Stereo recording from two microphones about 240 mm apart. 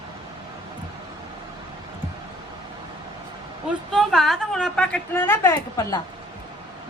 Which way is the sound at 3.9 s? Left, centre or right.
Centre.